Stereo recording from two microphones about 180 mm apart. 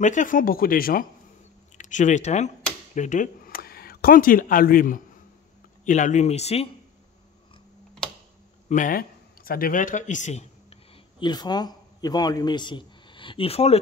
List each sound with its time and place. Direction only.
0.0 s speech: 45° left (ahead or behind)
8.6 s speech: 45° left (ahead or behind)
11.1 s a man's voice: 25° left (ahead or behind)